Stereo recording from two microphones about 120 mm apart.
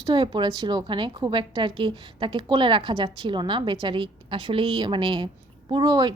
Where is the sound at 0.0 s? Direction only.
45° right (ahead or behind).